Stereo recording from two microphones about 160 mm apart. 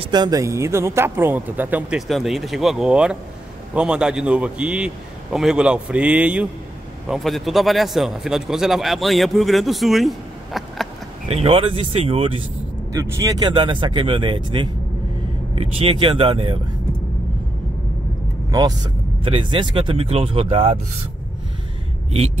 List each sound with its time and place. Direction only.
0.0 s a man's voice: 25° right (ahead or behind); by 10.9 s centre (ahead or behind)
11.2 s speech: 35° right (ahead or behind)
12.9 s speech: 20° right (ahead or behind)
18.5 s speech: 25° right (ahead or behind)